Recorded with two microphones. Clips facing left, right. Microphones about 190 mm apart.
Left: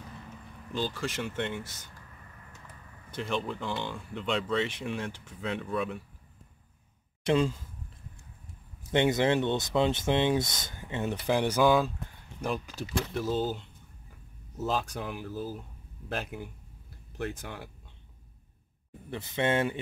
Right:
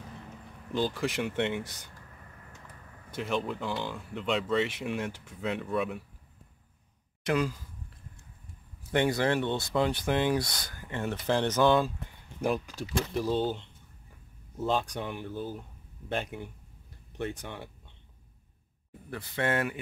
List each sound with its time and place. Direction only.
0.7 s speech: 15° right (ahead or behind)
3.1 s speech: 5° right (ahead or behind)
7.2 s speech: 25° left (ahead or behind)
8.9 s speech: 20° left (ahead or behind); by 17.6 s centre (ahead or behind)
19.0 s speech: 20° left (ahead or behind)